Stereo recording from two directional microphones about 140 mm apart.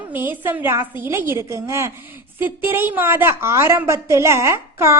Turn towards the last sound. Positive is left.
turn(degrees=-20)  # may be behind; listen again after turning